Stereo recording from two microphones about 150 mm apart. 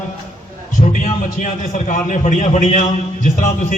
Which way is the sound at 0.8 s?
55° left (ahead or behind).